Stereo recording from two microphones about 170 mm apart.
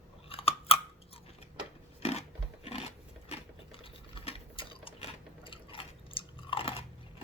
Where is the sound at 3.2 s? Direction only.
35° left (ahead or behind).